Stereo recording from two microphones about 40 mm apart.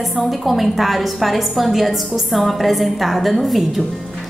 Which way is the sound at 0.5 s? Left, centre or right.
Centre.